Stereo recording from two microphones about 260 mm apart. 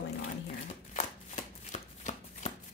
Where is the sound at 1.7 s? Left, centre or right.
Left.